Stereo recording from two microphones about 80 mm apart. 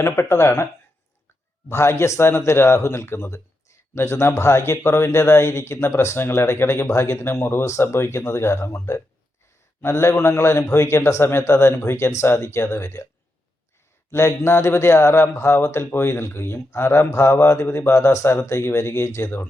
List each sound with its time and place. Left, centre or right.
0.0 s a man's voice: left
1.7 s a man's voice: left
14.1 s a man's voice: left